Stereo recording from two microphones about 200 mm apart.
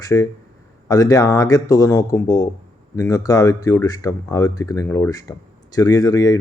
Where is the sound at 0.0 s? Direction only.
15° left (ahead or behind).